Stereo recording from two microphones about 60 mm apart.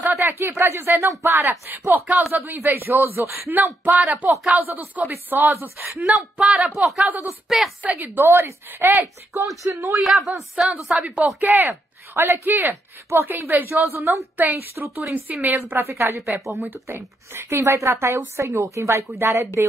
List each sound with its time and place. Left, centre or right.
0.1 s a woman's voice: right
1.9 s a woman's voice: right
6.3 s a woman's voice: centre
7.1 s a man's voice: right
7.4 s a woman's voice: centre
7.8 s a man's voice: right
9.6 s speech: right
9.9 s a woman's voice: centre
11.3 s a man's voice: right
14.8 s a woman's voice: centre
15.4 s a woman's voice: right
16.2 s a woman's voice: centre
16.8 s a woman's voice: right